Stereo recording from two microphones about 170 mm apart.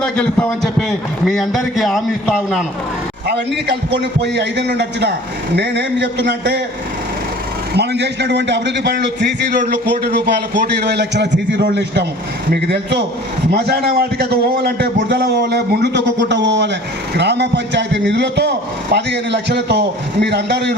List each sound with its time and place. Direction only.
0.0 s a man's voice: 5° left (ahead or behind)
3.2 s a man's voice: 75° right (ahead or behind)
5.5 s a man's voice: 90° right
7.8 s a man's voice: 85° right
9.5 s a man's voice: 55° right (ahead or behind); by 12.0 s 90° right
13.5 s a man's voice: 70° right (ahead or behind)